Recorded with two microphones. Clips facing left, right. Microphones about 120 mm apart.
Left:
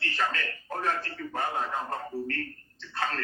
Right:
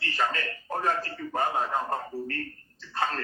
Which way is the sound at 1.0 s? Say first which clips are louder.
Right 3 dB; 45° right (ahead or behind).